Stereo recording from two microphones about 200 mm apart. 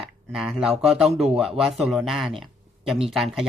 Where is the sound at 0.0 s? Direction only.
Centre (ahead or behind).